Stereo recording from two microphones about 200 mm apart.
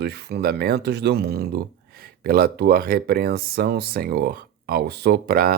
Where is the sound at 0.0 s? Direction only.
55° right (ahead or behind).